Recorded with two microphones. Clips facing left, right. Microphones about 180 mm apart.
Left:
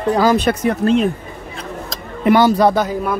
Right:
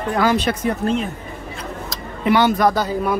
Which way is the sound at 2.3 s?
45° left (ahead or behind).